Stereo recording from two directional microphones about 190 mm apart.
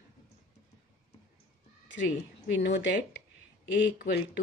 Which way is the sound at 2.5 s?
60° left (ahead or behind).